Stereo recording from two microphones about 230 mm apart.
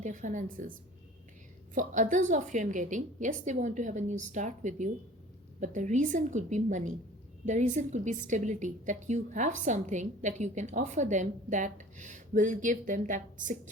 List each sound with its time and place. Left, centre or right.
0.0 s a woman's voice: right
1.7 s a woman's voice: right